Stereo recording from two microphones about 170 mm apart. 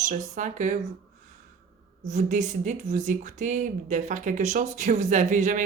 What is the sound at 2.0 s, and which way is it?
Speech, 45° right (ahead or behind).